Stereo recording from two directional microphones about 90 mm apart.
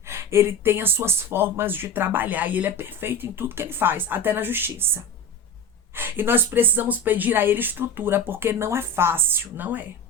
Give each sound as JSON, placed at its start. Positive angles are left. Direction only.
{"t": 0.1, "sound": "speech", "side_deg": -30}
{"t": 6.0, "sound": "speech", "side_deg": -25}